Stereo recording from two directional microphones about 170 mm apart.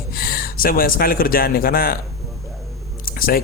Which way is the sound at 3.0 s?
60° left (ahead or behind).